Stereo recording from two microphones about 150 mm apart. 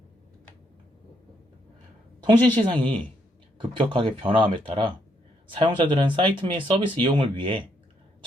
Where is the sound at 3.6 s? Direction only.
35° right (ahead or behind).